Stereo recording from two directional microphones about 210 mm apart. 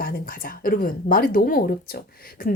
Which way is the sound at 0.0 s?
45° left (ahead or behind).